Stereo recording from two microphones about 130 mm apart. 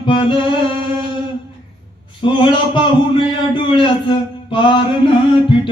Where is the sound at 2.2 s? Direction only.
40° left (ahead or behind).